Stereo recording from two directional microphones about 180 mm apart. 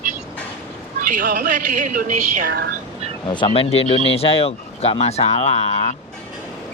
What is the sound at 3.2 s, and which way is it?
Speech, 25° left (ahead or behind).